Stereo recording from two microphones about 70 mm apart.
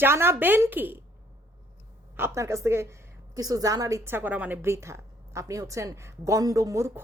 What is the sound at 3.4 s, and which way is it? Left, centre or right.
Speech, right.